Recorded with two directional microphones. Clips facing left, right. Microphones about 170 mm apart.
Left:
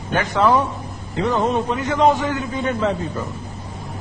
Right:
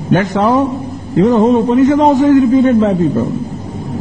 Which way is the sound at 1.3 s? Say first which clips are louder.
Right 9 dB; 40° right (ahead or behind).